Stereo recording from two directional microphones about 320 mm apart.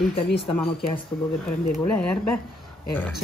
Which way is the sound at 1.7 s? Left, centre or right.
Centre.